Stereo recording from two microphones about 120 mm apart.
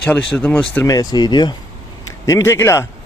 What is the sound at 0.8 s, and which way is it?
Speech, 30° left (ahead or behind).